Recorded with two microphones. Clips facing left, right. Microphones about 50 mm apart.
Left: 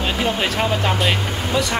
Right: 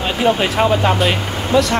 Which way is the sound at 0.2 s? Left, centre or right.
Centre.